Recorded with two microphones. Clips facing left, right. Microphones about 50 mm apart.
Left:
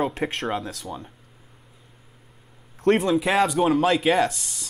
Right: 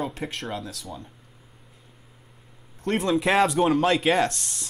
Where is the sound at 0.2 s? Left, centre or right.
Left.